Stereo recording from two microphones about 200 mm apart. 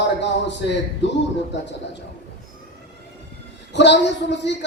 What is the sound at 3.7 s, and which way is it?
Speech, 60° left (ahead or behind).